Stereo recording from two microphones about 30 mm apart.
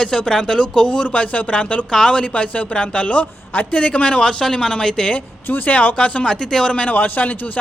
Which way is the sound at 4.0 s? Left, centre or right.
Left.